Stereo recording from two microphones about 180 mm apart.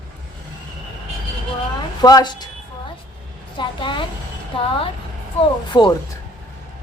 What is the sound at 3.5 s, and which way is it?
Speech, 25° left (ahead or behind).